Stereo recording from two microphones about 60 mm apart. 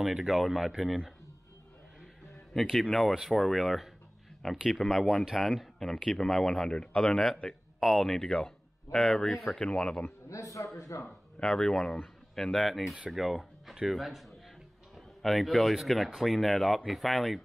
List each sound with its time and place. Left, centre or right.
0.0 s speech: centre
2.5 s speech: centre
7.8 s speech: centre
8.5 s speech: centre
9.6 s speech: centre
10.3 s a man's voice: left
10.8 s speech: left
11.4 s a man's voice: centre